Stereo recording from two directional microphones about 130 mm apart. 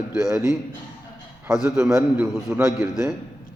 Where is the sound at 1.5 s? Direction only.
5° right (ahead or behind).